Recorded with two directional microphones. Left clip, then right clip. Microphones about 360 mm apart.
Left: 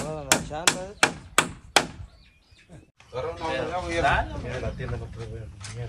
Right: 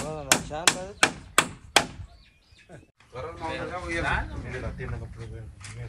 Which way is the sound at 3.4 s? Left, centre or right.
Centre.